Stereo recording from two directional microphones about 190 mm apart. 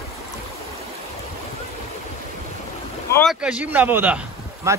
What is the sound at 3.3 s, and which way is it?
Speech, 5° right (ahead or behind).